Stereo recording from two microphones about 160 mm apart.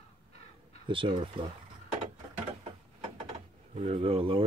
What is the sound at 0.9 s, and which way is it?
Speech, 30° right (ahead or behind).